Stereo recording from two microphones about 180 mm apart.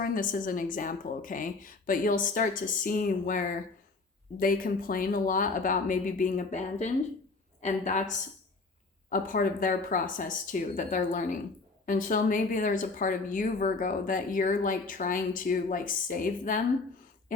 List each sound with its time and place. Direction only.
0.0 s speech: 50° left (ahead or behind)